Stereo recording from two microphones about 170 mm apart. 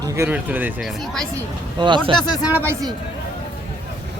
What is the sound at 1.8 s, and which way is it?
Speech, 25° right (ahead or behind).